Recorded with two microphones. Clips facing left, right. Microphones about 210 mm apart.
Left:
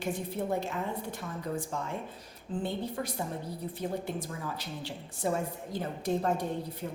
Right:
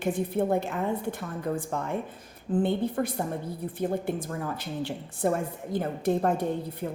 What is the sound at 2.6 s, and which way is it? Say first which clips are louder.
A woman's voice: right 7 dB; 55° right (ahead or behind).